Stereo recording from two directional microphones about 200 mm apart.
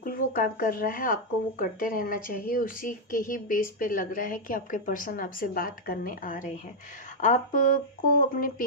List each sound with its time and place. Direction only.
0.0 s speech: 45° left (ahead or behind)